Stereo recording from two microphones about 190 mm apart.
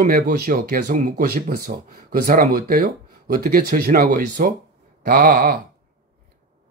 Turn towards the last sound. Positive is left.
turn(degrees=-50)  # may be behind; listen again after turning